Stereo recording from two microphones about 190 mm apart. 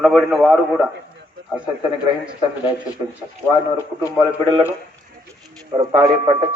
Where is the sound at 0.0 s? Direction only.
Centre (ahead or behind).